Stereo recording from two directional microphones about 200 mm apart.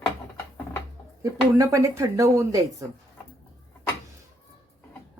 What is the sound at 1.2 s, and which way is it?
Speech, 15° right (ahead or behind).